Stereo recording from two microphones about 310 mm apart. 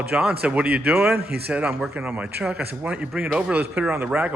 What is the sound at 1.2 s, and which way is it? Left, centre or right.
Speech, right.